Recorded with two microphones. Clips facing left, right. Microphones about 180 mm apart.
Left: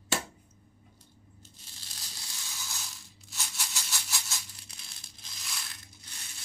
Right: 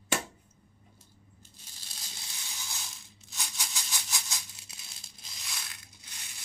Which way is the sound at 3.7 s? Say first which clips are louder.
Even; 15° right (ahead or behind).